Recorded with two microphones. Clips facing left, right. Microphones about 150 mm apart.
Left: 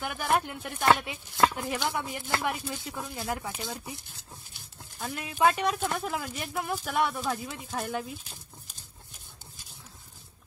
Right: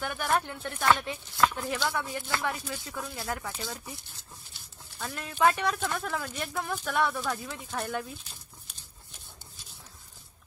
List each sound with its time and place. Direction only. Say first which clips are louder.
0.0 s speech: left 1 dB; 15° left (ahead or behind)
4.9 s speech: left 1 dB; 15° left (ahead or behind)